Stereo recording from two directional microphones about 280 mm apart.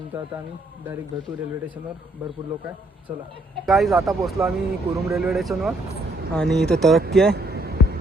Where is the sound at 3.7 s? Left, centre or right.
Centre.